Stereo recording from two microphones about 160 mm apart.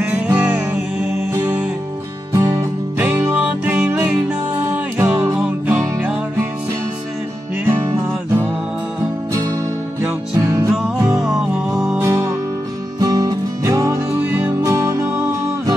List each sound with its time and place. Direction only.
0.0 s music: 10° right (ahead or behind)
7.6 s music: 15° right (ahead or behind)
10.3 s music: 20° right (ahead or behind)
11.1 s music: centre (ahead or behind)
12.0 s music: 15° right (ahead or behind)